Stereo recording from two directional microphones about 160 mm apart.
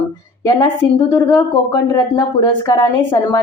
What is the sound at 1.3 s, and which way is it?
A woman's voice, 25° left (ahead or behind).